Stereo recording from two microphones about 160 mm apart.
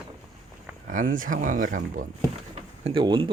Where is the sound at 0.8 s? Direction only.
55° right (ahead or behind).